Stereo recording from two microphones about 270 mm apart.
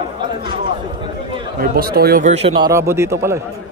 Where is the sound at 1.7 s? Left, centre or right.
Right; by 3.4 s centre.